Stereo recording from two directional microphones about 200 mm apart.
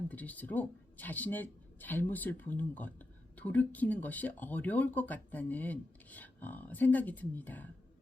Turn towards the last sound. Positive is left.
turn(degrees=10)  # may be behind; listen again after turning